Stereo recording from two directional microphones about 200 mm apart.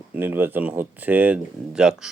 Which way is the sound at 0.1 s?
10° right (ahead or behind).